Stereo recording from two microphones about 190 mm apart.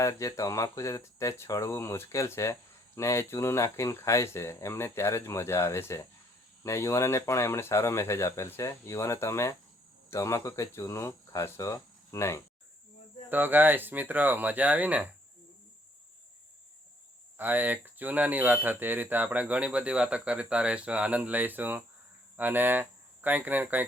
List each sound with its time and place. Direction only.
0.0 s speech: 15° left (ahead or behind)
13.3 s speech: 10° right (ahead or behind)
17.3 s speech: 10° right (ahead or behind)